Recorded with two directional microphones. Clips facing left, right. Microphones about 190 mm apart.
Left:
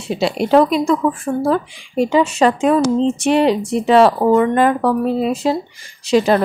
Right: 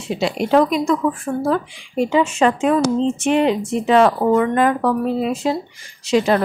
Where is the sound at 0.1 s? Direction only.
30° left (ahead or behind).